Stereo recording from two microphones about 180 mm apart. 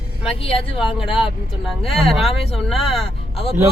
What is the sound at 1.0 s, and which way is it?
Speech, 30° left (ahead or behind).